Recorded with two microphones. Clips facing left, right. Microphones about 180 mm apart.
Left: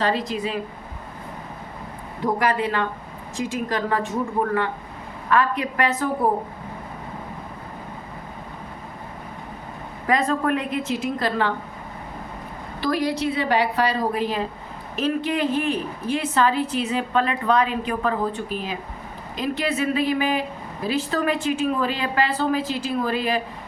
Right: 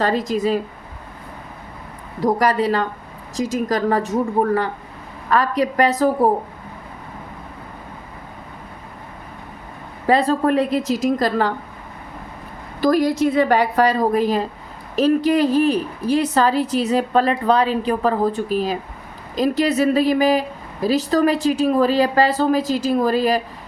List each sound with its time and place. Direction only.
0.0 s a woman's voice: 45° right (ahead or behind)
2.2 s a woman's voice: 35° right (ahead or behind)
10.1 s a woman's voice: 30° right (ahead or behind)
12.8 s a woman's voice: 45° right (ahead or behind)